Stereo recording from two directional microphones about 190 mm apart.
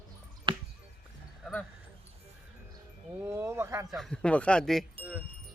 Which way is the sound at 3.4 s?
15° right (ahead or behind).